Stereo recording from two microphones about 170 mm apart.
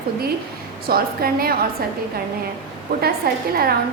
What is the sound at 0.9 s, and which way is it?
Speech, 60° right (ahead or behind).